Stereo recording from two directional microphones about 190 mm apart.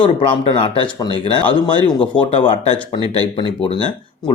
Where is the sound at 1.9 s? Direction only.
25° left (ahead or behind).